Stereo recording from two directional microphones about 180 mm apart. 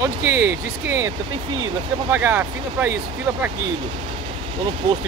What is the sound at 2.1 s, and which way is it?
Speech, 10° right (ahead or behind).